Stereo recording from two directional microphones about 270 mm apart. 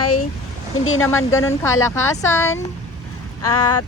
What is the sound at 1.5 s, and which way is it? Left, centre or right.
Speech, centre.